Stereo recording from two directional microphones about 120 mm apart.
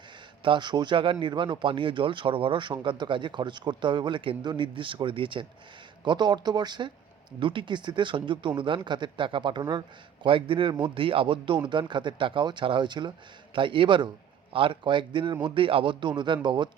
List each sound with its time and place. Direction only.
0.4 s speech: 40° right (ahead or behind)